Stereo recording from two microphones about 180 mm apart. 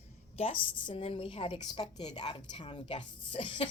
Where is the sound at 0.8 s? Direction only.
30° left (ahead or behind).